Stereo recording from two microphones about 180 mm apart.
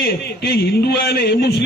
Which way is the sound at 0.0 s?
65° left (ahead or behind).